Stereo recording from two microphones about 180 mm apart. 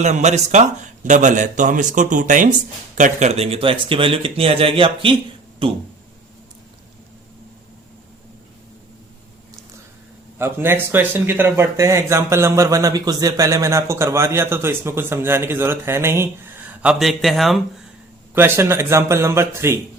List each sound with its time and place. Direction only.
0.0 s a man's voice: 40° right (ahead or behind)
10.3 s speech: 15° right (ahead or behind)
18.3 s speech: 15° right (ahead or behind)